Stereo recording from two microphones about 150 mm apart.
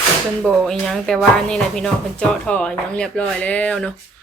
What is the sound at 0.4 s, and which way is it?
Speech, 5° right (ahead or behind).